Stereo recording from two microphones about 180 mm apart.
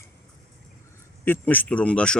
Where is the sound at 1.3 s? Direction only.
10° left (ahead or behind).